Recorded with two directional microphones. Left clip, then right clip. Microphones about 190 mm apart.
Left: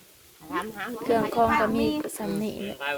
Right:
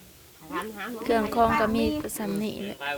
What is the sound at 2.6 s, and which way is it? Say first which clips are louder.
Speech: left 2 dB; 45° left (ahead or behind).